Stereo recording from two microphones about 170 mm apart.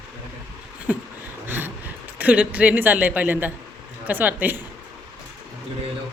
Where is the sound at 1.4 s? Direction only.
10° right (ahead or behind).